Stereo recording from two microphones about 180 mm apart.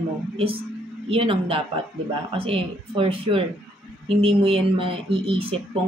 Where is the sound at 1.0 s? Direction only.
30° right (ahead or behind).